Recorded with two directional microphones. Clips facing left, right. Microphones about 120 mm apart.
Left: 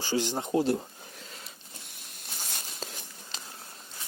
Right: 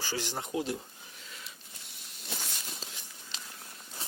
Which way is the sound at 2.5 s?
45° left (ahead or behind).